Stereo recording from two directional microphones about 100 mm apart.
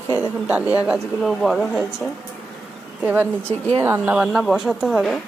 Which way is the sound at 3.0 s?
15° right (ahead or behind).